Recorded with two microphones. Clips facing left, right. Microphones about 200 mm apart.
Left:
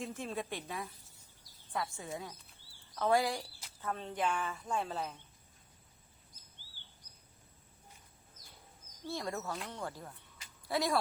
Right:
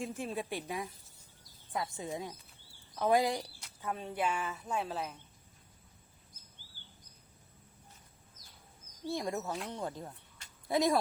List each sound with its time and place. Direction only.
0.0 s a woman's voice: 15° right (ahead or behind)
9.0 s a woman's voice: 15° right (ahead or behind)